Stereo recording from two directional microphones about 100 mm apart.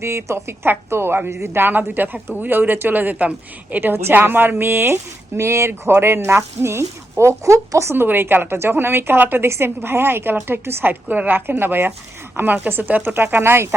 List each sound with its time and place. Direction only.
0.0 s speech: 25° right (ahead or behind)